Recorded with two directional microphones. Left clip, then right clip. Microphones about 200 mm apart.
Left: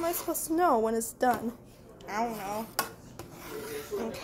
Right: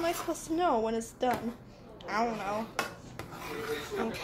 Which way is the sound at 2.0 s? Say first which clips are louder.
Right 1 dB; 5° left (ahead or behind).